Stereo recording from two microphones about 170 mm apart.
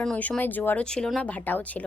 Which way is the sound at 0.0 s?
5° left (ahead or behind).